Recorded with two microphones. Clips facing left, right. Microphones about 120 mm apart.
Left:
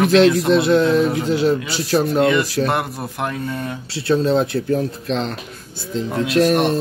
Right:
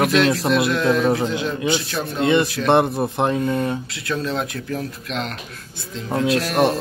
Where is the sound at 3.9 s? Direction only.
30° left (ahead or behind).